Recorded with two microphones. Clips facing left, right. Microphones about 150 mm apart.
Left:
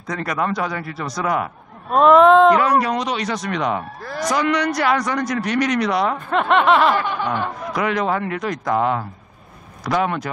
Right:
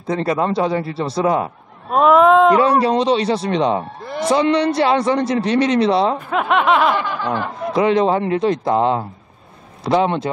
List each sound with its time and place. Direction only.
0.0 s a man's voice: 30° right (ahead or behind)
1.9 s snicker: 5° right (ahead or behind)
2.5 s a man's voice: 30° right (ahead or behind)
6.1 s snicker: 5° right (ahead or behind)
7.7 s a man's voice: 25° right (ahead or behind)